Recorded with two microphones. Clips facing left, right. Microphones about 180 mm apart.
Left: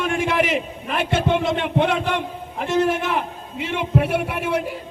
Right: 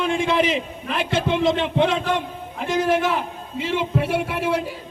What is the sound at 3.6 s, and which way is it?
Speech, 60° left (ahead or behind).